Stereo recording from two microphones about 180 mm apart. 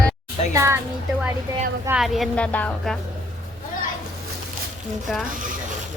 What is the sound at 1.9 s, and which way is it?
A woman's voice, centre (ahead or behind).